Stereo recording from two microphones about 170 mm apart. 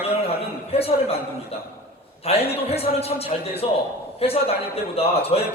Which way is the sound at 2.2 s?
35° left (ahead or behind).